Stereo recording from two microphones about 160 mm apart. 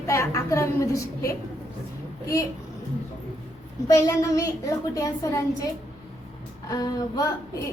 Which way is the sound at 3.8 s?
20° left (ahead or behind).